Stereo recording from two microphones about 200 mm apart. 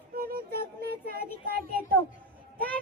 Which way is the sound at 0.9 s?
50° right (ahead or behind).